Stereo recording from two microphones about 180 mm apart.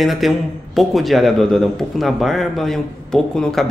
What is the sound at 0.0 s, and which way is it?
A man's voice, centre (ahead or behind).